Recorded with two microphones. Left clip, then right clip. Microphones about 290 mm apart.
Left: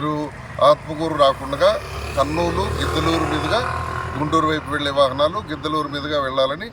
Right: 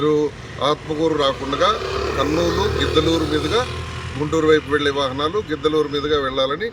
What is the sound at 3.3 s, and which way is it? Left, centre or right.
Speech, left.